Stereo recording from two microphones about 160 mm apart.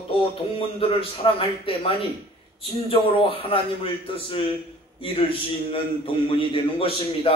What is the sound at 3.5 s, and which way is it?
Speech, 35° left (ahead or behind).